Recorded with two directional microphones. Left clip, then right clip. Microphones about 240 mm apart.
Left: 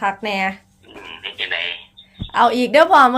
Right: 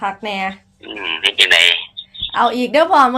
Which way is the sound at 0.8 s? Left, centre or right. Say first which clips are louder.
Right 14 dB; right.